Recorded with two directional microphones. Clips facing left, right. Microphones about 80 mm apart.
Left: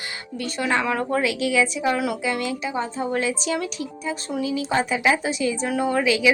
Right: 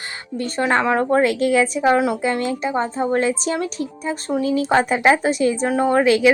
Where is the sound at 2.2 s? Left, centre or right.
Right.